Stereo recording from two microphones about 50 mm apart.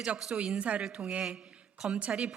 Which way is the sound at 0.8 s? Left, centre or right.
Centre.